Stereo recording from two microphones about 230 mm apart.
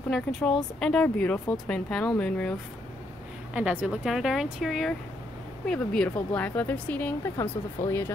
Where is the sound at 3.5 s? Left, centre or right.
Centre.